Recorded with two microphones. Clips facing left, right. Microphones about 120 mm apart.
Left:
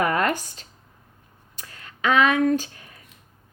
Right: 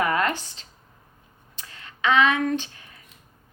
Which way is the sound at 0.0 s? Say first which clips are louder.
Left 1 dB; 40° left (ahead or behind).